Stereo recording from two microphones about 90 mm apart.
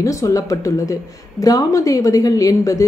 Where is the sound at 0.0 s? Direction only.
35° left (ahead or behind).